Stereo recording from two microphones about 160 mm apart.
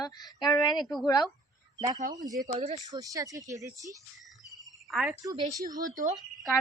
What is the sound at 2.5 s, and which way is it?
Speech, 40° right (ahead or behind).